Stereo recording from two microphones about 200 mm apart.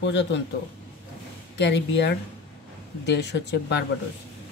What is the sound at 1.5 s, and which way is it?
Speech, 60° left (ahead or behind).